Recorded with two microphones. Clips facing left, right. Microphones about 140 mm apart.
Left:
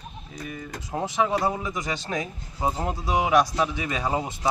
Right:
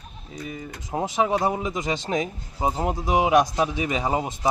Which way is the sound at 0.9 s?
15° right (ahead or behind).